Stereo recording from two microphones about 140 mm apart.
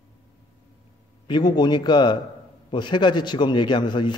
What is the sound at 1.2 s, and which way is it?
A man's voice, 30° left (ahead or behind).